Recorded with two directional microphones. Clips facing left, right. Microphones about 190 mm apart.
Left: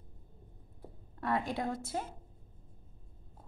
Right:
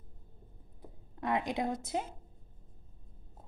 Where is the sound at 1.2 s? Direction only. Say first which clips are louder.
Right 1 dB; 15° right (ahead or behind).